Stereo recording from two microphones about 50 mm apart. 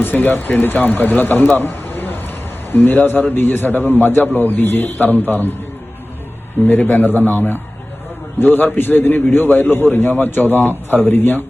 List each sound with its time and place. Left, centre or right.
0.0 s a man's voice: left
6.7 s a man's voice: left